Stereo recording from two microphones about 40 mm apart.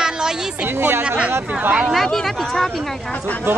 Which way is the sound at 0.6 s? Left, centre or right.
Right.